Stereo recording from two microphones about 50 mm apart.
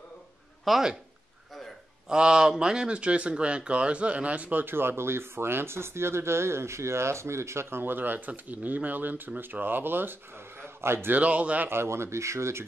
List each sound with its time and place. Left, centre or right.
0.7 s speech: centre
2.0 s speech: centre; by 7.6 s right
7.7 s speech: right
10.6 s a sound: right
11.1 s speech: right
11.6 s speech: right